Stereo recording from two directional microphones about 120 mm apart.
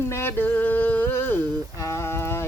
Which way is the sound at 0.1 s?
20° left (ahead or behind).